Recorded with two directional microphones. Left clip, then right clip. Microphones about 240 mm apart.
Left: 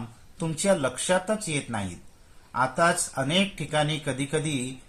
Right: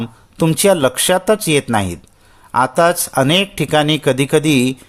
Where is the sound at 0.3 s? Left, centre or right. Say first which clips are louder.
Right 12 dB; right.